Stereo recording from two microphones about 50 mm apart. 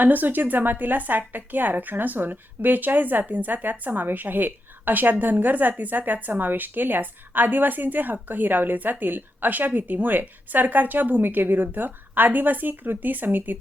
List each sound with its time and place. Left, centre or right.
0.0 s a woman's voice: right